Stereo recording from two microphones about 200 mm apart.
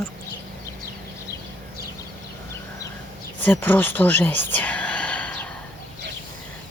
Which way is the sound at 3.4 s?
10° left (ahead or behind).